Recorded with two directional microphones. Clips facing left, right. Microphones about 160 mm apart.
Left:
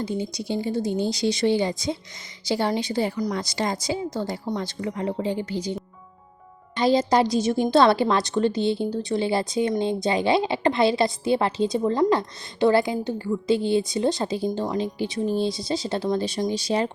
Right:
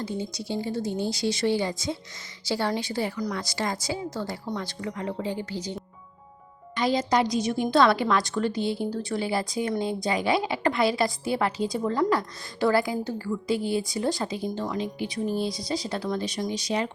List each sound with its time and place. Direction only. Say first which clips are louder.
0.0 s a woman's voice: left 4 dB; 15° left (ahead or behind)
6.7 s a woman's voice: left 4 dB; 30° left (ahead or behind)